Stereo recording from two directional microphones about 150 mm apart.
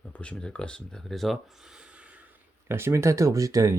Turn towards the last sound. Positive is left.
turn(degrees=-20)  # may be behind; listen again after turning